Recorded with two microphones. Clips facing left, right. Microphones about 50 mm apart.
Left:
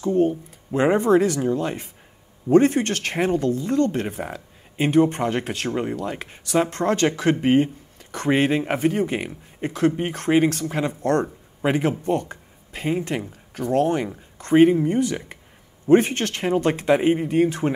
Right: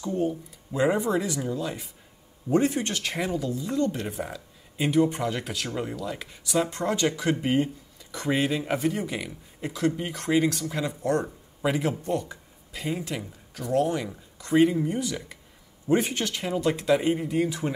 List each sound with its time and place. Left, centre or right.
0.7 s speech: left
11.0 s speech: left
11.6 s a man's voice: left